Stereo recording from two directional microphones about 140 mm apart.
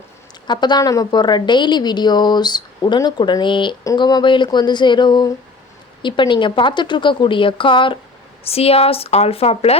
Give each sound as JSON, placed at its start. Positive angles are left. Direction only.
{"t": 0.4, "sound": "a woman's voice", "side_deg": 30}